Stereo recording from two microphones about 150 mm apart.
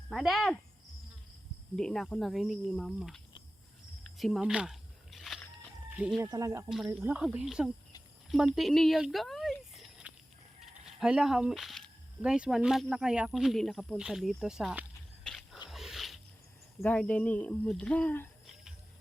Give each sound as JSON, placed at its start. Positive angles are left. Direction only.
{"t": 0.1, "sound": "speech", "side_deg": 0}
{"t": 1.7, "sound": "speech", "side_deg": 5}
{"t": 4.0, "sound": "a sound", "side_deg": 0}
{"t": 6.1, "sound": "speech", "side_deg": -25}
{"t": 6.7, "sound": "speech", "side_deg": 0}
{"t": 8.3, "sound": "a sound", "side_deg": 0}
{"t": 10.6, "sound": "speech", "side_deg": -5}
{"t": 15.7, "sound": "a sound", "side_deg": 0}
{"t": 16.8, "sound": "speech", "side_deg": 10}